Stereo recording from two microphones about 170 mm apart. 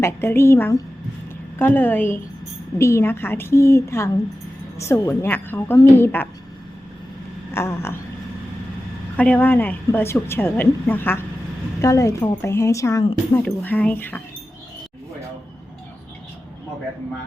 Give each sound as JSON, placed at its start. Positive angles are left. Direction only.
{"t": 0.0, "sound": "a woman's voice", "side_deg": 15}
{"t": 7.5, "sound": "a woman's voice", "side_deg": 15}
{"t": 9.1, "sound": "a woman's voice", "side_deg": 10}